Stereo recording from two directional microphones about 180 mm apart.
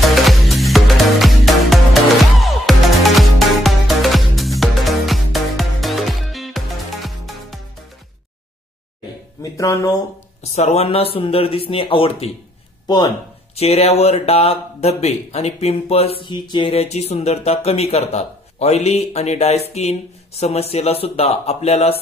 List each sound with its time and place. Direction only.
0.1 s music: centre (ahead or behind)
9.4 s speech: 15° left (ahead or behind)
10.5 s speech: 35° left (ahead or behind)
13.6 s speech: 35° left (ahead or behind)